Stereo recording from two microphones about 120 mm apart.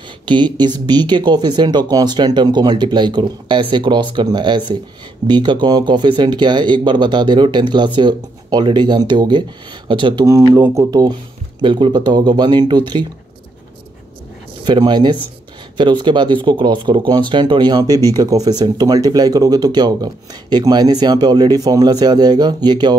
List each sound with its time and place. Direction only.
0.2 s speech: 40° right (ahead or behind)
10.2 s speech: 25° right (ahead or behind)
14.6 s speech: 40° right (ahead or behind)